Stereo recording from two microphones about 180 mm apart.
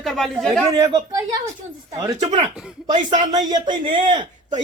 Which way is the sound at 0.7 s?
25° right (ahead or behind).